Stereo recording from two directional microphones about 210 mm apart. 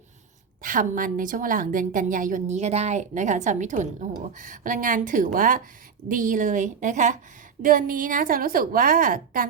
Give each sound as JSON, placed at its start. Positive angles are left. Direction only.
{"t": 0.6, "sound": "a woman's voice", "side_deg": -40}